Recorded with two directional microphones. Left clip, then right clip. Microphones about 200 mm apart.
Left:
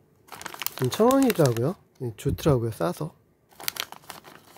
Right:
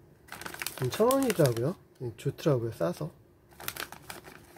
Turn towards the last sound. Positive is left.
turn(degrees=40)  # may be behind; listen again after turning